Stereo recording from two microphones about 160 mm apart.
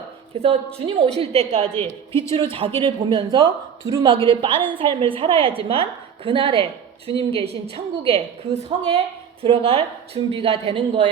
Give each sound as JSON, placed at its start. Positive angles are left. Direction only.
{"t": 0.3, "sound": "a woman's voice", "side_deg": -35}